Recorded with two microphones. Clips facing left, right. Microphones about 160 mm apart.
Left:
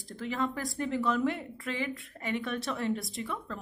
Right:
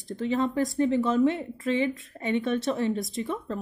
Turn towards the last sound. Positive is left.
turn(degrees=-20)  # may be behind; listen again after turning